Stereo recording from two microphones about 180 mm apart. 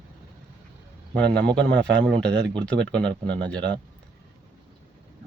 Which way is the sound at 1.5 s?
85° right.